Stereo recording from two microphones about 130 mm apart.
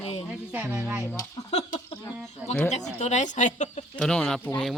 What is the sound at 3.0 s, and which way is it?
Speech, 65° left (ahead or behind).